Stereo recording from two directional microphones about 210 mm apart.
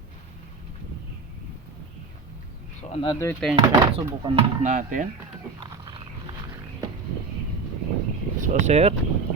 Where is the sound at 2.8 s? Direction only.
25° left (ahead or behind).